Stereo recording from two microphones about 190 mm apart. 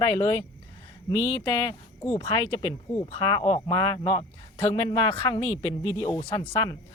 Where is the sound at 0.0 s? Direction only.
25° left (ahead or behind).